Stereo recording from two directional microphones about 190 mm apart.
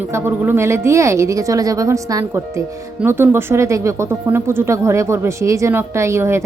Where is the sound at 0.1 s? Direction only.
10° right (ahead or behind).